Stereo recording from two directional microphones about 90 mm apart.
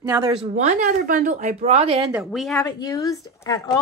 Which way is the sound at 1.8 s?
90° right.